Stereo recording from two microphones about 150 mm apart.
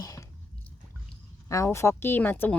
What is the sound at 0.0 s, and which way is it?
Chewing, 20° left (ahead or behind).